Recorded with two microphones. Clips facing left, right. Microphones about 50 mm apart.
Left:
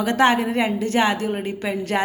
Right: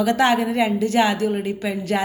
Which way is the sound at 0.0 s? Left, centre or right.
Left.